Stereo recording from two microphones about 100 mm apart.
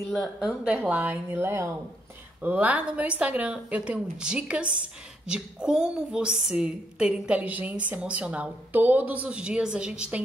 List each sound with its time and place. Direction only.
0.1 s a woman's voice: centre (ahead or behind); by 1.7 s 25° right (ahead or behind)
2.4 s a woman's voice: 15° right (ahead or behind)